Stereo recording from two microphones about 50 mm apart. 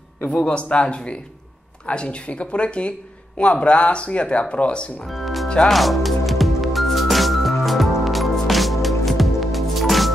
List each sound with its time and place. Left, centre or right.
0.3 s speech: centre
5.0 s music: centre